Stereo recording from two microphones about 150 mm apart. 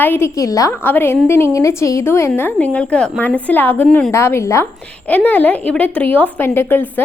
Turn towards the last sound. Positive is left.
turn(degrees=15)  # may be behind; listen again after turning